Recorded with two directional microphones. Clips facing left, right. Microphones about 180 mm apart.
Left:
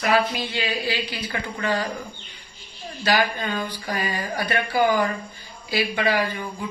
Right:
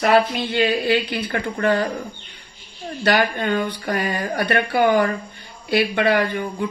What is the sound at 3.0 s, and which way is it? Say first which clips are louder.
Speech: right 3 dB; 60° right (ahead or behind).